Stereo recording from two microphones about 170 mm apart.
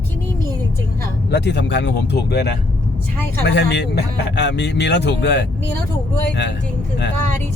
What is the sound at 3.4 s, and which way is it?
Speech, 90° left.